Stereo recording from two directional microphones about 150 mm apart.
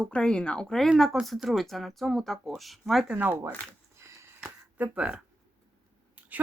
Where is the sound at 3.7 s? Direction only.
20° right (ahead or behind).